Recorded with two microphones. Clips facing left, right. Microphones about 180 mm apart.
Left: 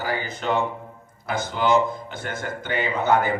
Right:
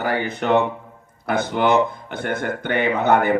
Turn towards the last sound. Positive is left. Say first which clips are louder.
# right 4 dB
turn(degrees=-60)  # may be behind; listen again after turning